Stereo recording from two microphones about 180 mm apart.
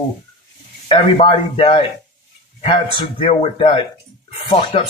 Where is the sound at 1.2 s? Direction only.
30° left (ahead or behind).